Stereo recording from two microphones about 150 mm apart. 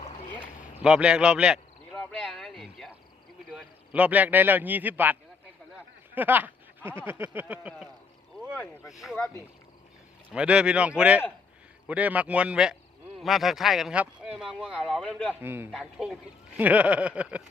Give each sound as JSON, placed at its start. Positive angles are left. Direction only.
{"t": 0.3, "sound": "boat", "side_deg": -10}
{"t": 1.9, "sound": "a sound", "side_deg": 5}
{"t": 3.5, "sound": "a man's voice", "side_deg": -5}
{"t": 6.1, "sound": "speech", "side_deg": -10}
{"t": 8.5, "sound": "speech", "side_deg": 15}
{"t": 8.9, "sound": "speech", "side_deg": 0}
{"t": 9.1, "sound": "speech", "side_deg": 15}
{"t": 10.3, "sound": "speech", "side_deg": -5}
{"t": 15.4, "sound": "speech", "side_deg": -15}
{"t": 15.7, "sound": "speech", "side_deg": -5}